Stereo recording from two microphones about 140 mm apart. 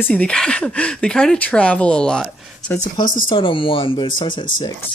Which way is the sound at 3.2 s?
40° left (ahead or behind).